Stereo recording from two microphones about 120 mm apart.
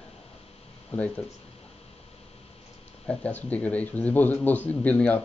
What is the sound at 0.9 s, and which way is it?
Speech, 10° left (ahead or behind).